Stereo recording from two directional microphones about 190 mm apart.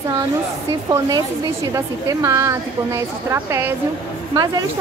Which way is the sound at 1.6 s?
15° right (ahead or behind).